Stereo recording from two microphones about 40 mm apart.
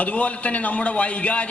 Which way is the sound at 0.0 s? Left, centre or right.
Left.